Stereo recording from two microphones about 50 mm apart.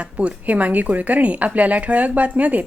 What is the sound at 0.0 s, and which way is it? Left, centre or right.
Speech, right.